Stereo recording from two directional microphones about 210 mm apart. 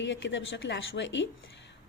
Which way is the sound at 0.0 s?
60° left (ahead or behind).